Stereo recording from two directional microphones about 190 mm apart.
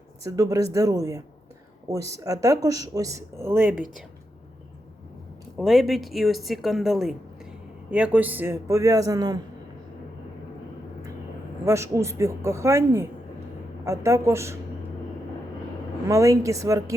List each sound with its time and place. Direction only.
0.2 s speech: 15° right (ahead or behind)
5.5 s a woman's voice: centre (ahead or behind); by 9.4 s 20° right (ahead or behind)
11.6 s speech: 15° right (ahead or behind)
16.0 s speech: 15° right (ahead or behind)